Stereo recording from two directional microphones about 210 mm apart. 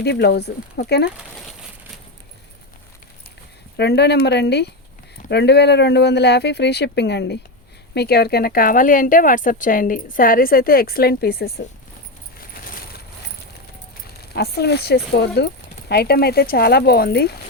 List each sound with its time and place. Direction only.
0.0 s speech: 50° left (ahead or behind)
3.8 s speech: 55° left (ahead or behind)
14.2 s speech: 50° left (ahead or behind)